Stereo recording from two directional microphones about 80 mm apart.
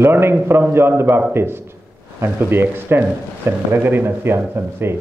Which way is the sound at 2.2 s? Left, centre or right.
Right.